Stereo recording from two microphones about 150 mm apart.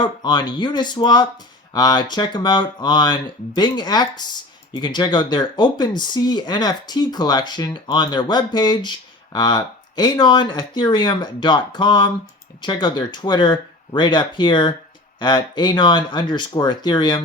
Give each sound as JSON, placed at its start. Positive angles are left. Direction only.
{"t": 0.0, "sound": "speech", "side_deg": 30}